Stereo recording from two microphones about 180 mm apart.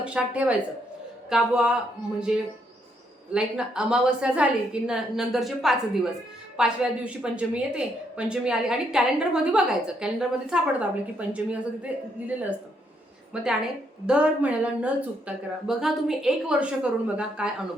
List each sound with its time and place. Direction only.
0.0 s a woman's voice: 5° right (ahead or behind)